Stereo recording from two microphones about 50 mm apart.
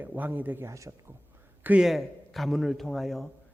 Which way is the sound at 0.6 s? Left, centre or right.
Right.